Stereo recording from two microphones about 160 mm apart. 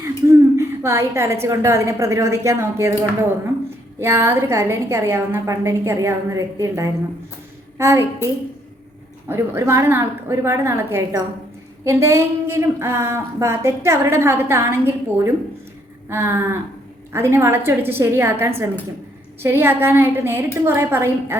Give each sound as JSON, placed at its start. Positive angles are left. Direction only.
{"t": 0.0, "sound": "a woman's voice", "side_deg": -15}